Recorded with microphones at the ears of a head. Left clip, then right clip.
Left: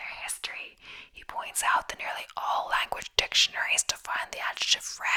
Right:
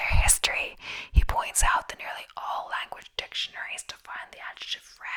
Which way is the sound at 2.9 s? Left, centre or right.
Left.